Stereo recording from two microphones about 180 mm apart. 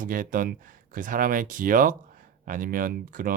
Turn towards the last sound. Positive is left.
turn(degrees=-50)  # may be behind; listen again after turning